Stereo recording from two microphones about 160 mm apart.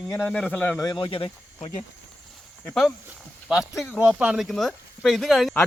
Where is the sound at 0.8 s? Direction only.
25° left (ahead or behind).